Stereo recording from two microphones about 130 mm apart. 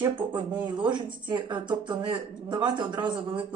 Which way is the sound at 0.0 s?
35° right (ahead or behind).